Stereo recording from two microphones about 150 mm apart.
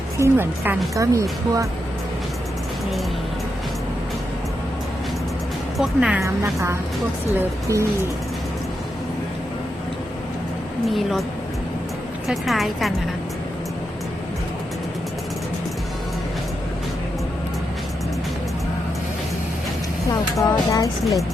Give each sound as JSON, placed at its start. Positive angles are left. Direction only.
{"t": 0.2, "sound": "a woman's voice", "side_deg": -15}
{"t": 5.7, "sound": "a woman's voice", "side_deg": 0}
{"t": 6.2, "sound": "a woman's voice", "side_deg": -20}
{"t": 10.8, "sound": "a woman's voice", "side_deg": 0}
{"t": 12.3, "sound": "a woman's voice", "side_deg": 0}
{"t": 20.3, "sound": "speech", "side_deg": 20}
{"t": 21.0, "sound": "a woman's voice", "side_deg": 0}